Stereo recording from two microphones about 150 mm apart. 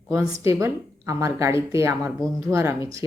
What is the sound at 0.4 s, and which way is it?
Speech, 20° right (ahead or behind).